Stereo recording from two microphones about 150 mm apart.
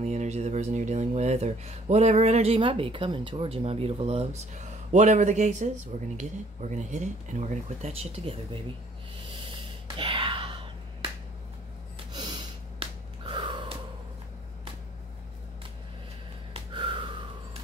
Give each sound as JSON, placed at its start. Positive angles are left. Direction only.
{"t": 0.0, "sound": "speech", "side_deg": -50}
{"t": 9.9, "sound": "music", "side_deg": -35}
{"t": 12.1, "sound": "gasp", "side_deg": -30}
{"t": 16.7, "sound": "gasp", "side_deg": -35}